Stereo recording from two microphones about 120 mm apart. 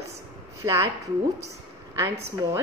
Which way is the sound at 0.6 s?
20° right (ahead or behind).